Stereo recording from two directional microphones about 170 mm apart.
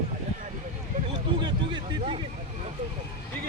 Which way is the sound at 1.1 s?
25° right (ahead or behind).